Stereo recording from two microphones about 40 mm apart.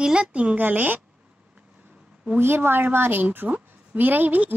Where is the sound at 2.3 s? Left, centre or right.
Right.